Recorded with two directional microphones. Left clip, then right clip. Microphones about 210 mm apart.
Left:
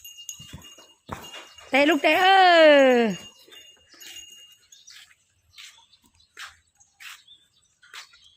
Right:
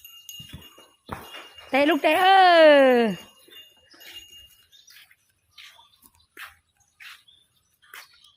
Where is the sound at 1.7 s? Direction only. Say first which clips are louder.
Left 1 dB; 10° left (ahead or behind).